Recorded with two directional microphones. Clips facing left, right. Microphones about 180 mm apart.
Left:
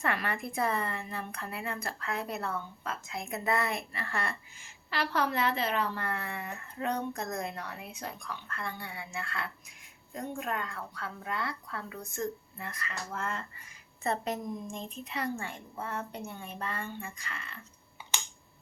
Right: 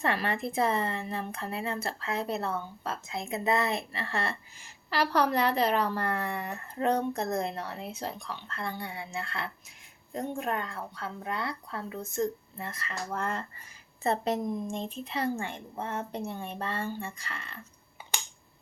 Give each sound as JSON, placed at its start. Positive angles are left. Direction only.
{"t": 0.0, "sound": "a woman's voice", "side_deg": -25}